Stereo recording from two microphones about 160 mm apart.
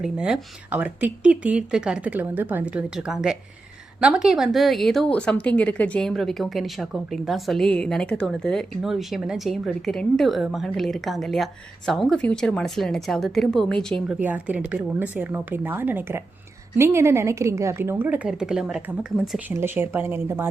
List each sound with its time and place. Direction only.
0.0 s a woman's voice: 5° right (ahead or behind)
14.1 s speech: 10° right (ahead or behind)